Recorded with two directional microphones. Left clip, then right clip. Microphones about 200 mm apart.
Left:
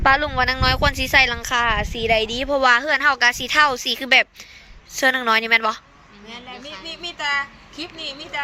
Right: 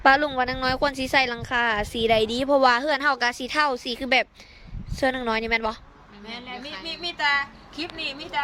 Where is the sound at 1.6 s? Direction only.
20° right (ahead or behind).